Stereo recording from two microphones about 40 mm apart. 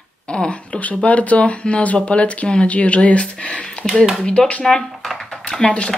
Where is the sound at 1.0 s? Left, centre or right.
Left.